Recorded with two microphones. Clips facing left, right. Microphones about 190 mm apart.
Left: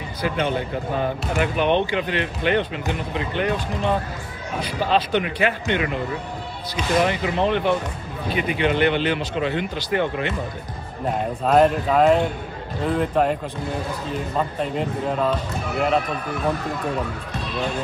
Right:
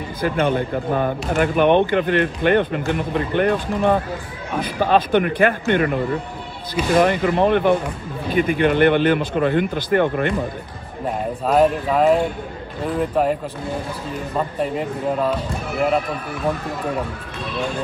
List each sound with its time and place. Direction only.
0.2 s speech: 50° right (ahead or behind)
11.4 s speech: 5° right (ahead or behind)
14.6 s a man's voice: 5° right (ahead or behind)